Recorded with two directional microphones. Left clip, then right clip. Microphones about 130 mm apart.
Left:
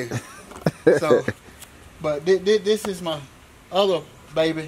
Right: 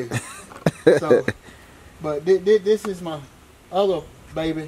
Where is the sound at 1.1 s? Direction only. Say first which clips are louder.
Right 2 dB; 15° right (ahead or behind).